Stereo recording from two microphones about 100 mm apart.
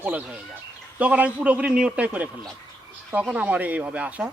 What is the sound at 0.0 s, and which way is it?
Speech, 15° right (ahead or behind).